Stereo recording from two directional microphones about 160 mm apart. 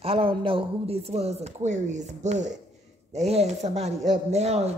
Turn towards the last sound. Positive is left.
turn(degrees=-40)  # may be behind; listen again after turning